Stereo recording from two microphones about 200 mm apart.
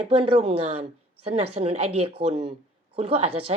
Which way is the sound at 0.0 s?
30° right (ahead or behind).